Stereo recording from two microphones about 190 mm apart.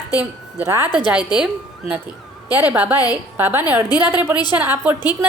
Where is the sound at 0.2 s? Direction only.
10° right (ahead or behind).